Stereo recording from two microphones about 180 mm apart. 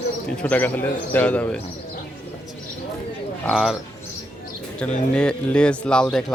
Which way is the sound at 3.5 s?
Centre (ahead or behind).